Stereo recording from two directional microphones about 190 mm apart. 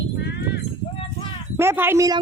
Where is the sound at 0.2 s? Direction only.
60° left (ahead or behind).